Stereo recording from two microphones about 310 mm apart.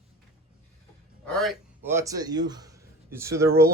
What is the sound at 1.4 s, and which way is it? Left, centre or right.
A man's voice, centre.